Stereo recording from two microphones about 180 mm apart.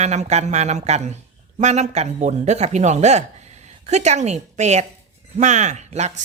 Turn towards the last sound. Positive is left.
turn(degrees=-40)  # may be behind; listen again after turning